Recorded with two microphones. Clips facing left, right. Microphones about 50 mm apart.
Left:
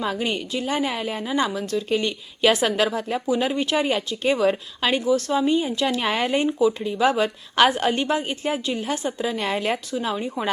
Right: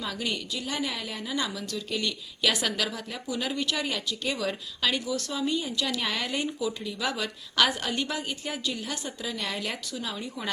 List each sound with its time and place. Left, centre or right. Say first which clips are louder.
0.0 s a woman's voice: left 7 dB; left